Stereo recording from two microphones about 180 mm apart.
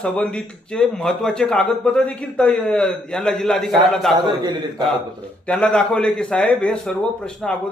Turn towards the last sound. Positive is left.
turn(degrees=5)  # may be behind; listen again after turning